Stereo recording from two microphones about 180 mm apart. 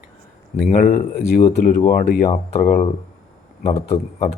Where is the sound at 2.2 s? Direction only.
40° left (ahead or behind).